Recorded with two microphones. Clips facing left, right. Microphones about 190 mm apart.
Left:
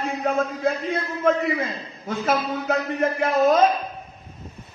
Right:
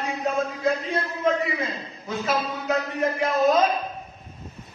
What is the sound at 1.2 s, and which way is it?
A man's voice, 50° left (ahead or behind).